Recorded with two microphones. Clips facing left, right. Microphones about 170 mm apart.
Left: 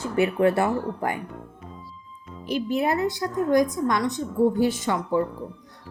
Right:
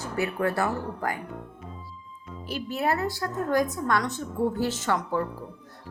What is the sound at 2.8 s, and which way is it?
A woman's voice, 15° left (ahead or behind).